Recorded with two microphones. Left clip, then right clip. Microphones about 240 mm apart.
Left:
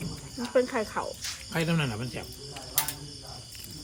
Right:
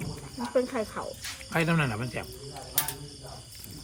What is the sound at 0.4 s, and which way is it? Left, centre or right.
Speech, centre.